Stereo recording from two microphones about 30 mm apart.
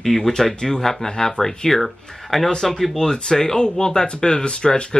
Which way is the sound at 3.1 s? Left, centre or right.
Left.